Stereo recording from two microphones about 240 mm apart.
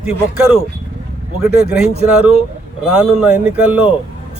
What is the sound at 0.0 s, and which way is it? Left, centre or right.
Speech, centre.